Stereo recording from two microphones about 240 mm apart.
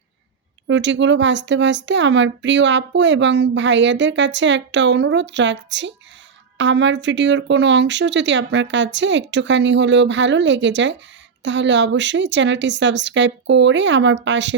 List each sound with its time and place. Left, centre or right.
0.7 s speech: right